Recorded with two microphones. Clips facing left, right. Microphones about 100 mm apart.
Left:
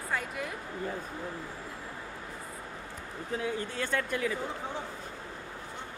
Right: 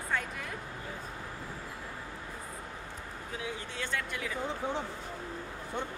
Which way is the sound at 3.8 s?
45° left (ahead or behind).